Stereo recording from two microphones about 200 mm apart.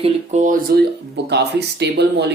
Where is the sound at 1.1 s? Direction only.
55° right (ahead or behind).